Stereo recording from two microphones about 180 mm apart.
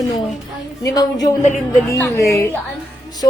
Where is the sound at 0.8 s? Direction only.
20° left (ahead or behind).